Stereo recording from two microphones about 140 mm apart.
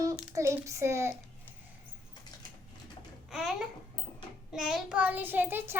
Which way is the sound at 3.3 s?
5° right (ahead or behind).